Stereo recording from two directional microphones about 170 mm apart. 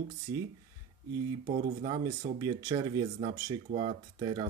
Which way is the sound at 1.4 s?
25° right (ahead or behind).